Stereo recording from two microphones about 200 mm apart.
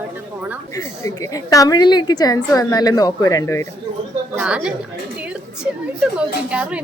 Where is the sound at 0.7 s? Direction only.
15° left (ahead or behind).